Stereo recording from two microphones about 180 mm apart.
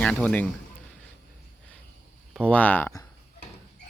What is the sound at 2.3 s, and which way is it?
Speech, 5° left (ahead or behind).